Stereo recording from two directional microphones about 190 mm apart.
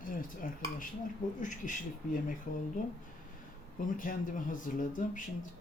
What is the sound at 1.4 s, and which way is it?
Speech, 40° left (ahead or behind).